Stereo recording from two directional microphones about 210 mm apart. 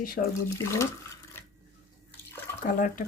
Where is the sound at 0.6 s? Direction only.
15° left (ahead or behind).